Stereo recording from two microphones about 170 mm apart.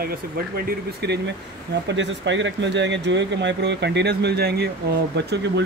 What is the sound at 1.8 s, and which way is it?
Speech, 90° right.